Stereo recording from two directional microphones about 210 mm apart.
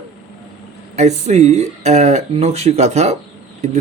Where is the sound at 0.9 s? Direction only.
30° right (ahead or behind).